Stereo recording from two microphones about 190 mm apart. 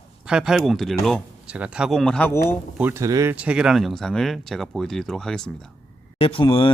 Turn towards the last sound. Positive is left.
turn(degrees=25)  # may be behind; listen again after turning